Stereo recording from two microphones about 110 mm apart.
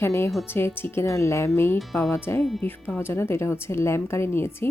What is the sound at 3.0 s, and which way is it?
Speech, 20° left (ahead or behind).